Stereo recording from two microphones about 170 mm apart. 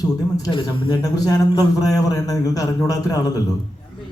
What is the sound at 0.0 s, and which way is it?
A man's voice, 20° left (ahead or behind).